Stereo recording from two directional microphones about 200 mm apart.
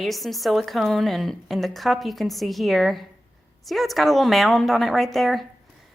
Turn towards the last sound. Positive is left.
turn(degrees=0)  # may be behind; listen again after turning